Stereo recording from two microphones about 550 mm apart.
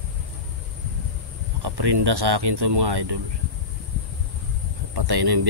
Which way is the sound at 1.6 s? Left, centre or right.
Right.